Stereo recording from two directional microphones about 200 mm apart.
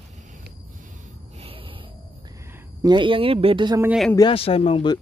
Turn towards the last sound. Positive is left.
turn(degrees=25)  # may be behind; listen again after turning